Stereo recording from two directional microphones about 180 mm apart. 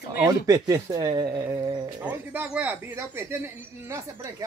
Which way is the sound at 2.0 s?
10° right (ahead or behind).